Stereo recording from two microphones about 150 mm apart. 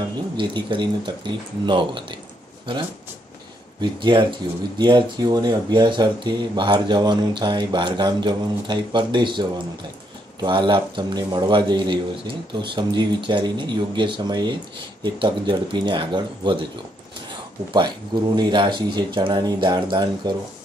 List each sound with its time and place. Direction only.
0.4 s speech: 30° right (ahead or behind)
3.8 s speech: 30° right (ahead or behind)
17.7 s speech: 30° right (ahead or behind)